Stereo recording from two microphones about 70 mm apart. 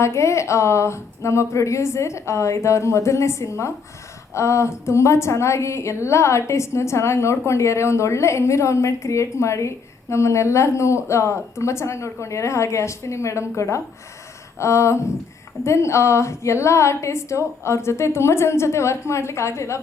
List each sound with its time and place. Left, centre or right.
0.0 s a woman's voice: left